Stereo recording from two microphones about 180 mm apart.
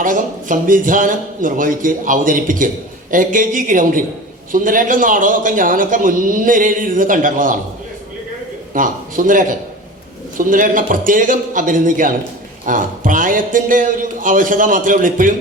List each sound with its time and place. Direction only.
0.0 s a man's voice: 45° right (ahead or behind)
8.7 s a man's voice: 50° right (ahead or behind)